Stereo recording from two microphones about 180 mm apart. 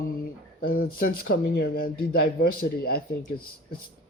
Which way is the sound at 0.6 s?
50° left (ahead or behind).